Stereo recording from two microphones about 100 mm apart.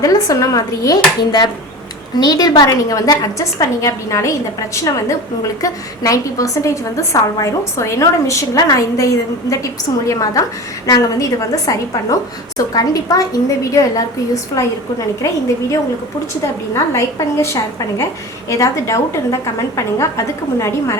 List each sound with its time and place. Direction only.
0.0 s a woman's voice: 35° left (ahead or behind)
16.7 s a woman's voice: 30° left (ahead or behind)